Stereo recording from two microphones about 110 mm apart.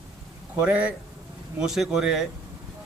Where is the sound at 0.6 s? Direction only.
10° right (ahead or behind).